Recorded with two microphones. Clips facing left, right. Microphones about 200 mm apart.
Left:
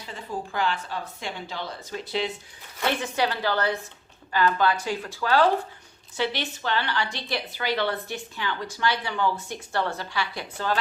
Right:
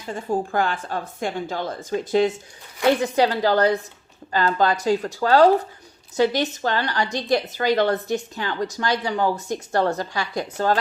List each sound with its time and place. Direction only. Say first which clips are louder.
0.0 s a woman's voice: right 9 dB; 45° right (ahead or behind)